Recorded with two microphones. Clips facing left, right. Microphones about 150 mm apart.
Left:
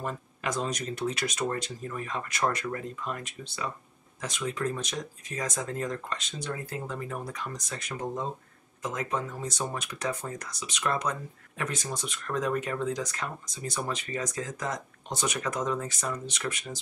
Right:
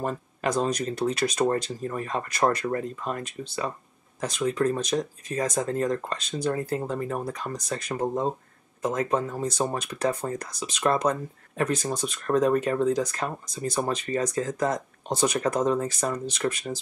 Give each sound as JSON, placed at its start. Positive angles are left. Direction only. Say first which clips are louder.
{"t": 0.0, "sound": "speech", "louder": "right 6 dB", "side_deg": -35}